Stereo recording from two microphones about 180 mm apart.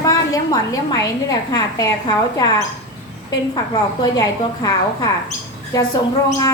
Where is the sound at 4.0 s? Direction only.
20° left (ahead or behind).